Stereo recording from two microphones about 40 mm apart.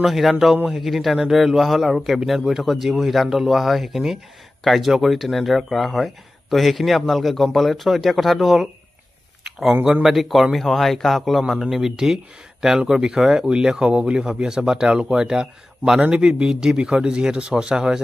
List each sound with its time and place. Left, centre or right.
0.0 s a man's voice: centre
10.0 s a man's voice: centre